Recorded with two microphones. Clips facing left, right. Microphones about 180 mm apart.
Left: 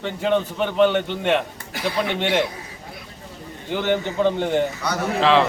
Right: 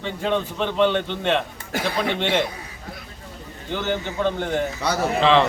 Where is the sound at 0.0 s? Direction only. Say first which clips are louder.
Left 3 dB; 10° left (ahead or behind).